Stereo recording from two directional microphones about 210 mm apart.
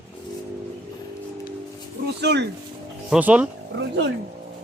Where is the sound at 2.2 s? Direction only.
55° right (ahead or behind).